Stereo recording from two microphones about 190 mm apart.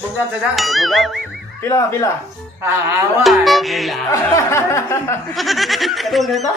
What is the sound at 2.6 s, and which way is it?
Speech, 15° right (ahead or behind).